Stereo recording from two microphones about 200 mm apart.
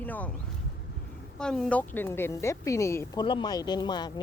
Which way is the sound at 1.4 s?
Centre (ahead or behind).